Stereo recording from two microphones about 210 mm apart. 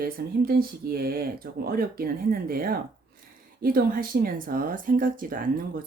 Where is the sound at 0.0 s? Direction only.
45° right (ahead or behind).